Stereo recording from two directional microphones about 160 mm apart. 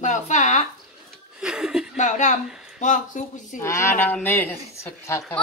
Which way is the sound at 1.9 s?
50° left (ahead or behind).